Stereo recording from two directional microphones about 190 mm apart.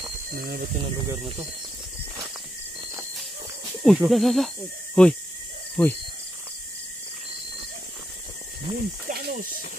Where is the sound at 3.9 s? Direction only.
Centre (ahead or behind).